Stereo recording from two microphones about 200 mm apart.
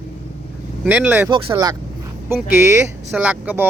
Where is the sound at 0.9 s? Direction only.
10° right (ahead or behind).